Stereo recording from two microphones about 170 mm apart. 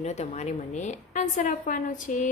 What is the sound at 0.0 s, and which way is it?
A woman's voice, 40° left (ahead or behind).